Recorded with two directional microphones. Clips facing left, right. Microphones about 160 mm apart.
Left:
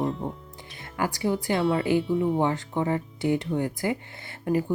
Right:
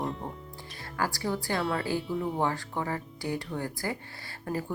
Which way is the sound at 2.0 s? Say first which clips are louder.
Left 7 dB; centre (ahead or behind).